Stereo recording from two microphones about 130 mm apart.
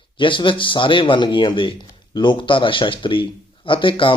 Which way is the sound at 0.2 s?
40° left (ahead or behind).